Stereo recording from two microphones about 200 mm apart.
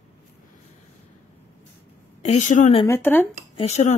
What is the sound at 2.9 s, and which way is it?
Speech, 10° left (ahead or behind).